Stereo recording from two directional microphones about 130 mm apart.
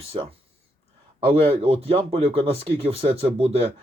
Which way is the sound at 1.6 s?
45° right (ahead or behind).